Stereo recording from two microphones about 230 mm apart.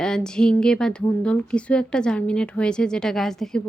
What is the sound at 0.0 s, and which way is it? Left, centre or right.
Speech, centre.